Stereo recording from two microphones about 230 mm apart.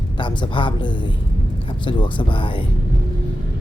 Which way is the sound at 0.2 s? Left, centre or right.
Left.